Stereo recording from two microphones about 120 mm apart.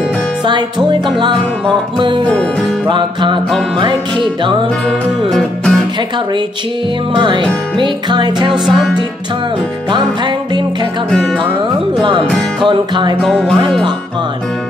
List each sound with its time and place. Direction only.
0.5 s music: 40° right (ahead or behind)
3.4 s music: 5° left (ahead or behind)
4.8 s music: 5° left (ahead or behind)
7.2 s music: 40° right (ahead or behind)
8.5 s music: centre (ahead or behind)
9.8 s music: 40° right (ahead or behind)
11.1 s music: 5° left (ahead or behind)
12.6 s music: 40° right (ahead or behind)
13.2 s music: 5° left (ahead or behind)